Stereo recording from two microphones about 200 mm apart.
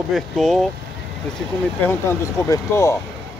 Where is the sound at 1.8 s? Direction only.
10° left (ahead or behind).